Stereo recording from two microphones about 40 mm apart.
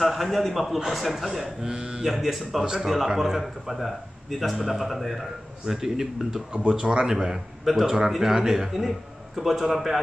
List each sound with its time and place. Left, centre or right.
0.0 s a man's voice: centre
1.7 s speech: right
2.0 s a man's voice: centre